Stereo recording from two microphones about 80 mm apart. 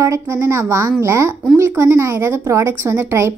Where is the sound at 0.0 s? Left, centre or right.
Right.